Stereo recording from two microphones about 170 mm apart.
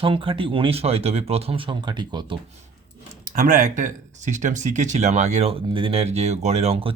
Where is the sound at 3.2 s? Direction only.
50° right (ahead or behind).